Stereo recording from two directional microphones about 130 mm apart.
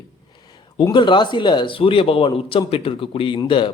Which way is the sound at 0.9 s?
35° left (ahead or behind).